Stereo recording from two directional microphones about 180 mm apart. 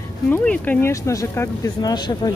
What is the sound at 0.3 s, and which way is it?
Speech, 10° left (ahead or behind).